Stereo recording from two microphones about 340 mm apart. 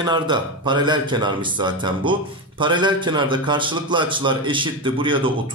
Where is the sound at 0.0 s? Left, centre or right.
Centre.